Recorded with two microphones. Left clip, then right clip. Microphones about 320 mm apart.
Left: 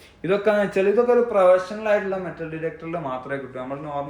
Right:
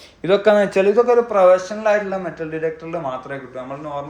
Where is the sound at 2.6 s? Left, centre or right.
Centre.